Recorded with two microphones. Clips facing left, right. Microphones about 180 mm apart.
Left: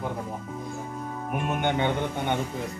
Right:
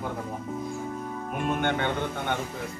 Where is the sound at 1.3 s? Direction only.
15° left (ahead or behind).